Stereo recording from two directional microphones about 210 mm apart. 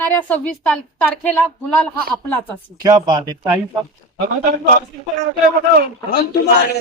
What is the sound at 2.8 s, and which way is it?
Speech, 20° right (ahead or behind).